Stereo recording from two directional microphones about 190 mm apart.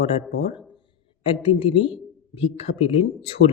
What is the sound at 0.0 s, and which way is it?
A woman's voice, 30° left (ahead or behind).